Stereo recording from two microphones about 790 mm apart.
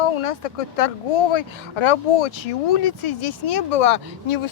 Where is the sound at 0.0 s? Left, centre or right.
Left.